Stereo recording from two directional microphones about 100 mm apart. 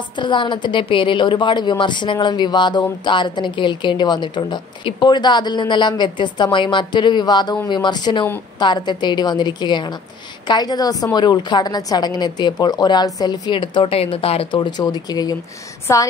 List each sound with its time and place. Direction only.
0.2 s a woman's voice: 50° left (ahead or behind); by 14.5 s 75° left (ahead or behind)
14.5 s speech: 50° left (ahead or behind)
15.9 s speech: 30° left (ahead or behind)